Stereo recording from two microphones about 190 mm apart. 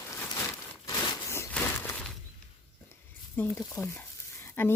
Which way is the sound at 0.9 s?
15° left (ahead or behind).